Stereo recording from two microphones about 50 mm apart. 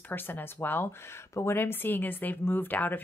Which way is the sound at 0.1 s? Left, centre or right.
Left.